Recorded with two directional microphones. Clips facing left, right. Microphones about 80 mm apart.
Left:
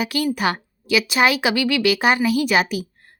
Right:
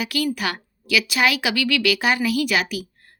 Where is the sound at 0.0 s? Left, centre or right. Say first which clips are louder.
Left 3 dB; left.